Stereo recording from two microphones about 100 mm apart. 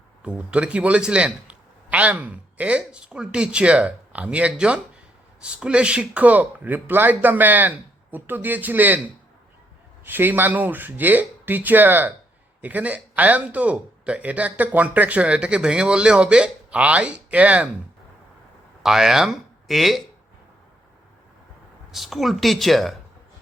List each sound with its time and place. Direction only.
0.2 s a man's voice: 15° right (ahead or behind)
10.0 s a man's voice: 20° right (ahead or behind)
18.8 s speech: 5° right (ahead or behind)
21.9 s speech: centre (ahead or behind)